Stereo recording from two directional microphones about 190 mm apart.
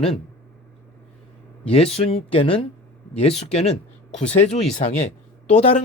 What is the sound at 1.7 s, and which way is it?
Speech, 30° left (ahead or behind).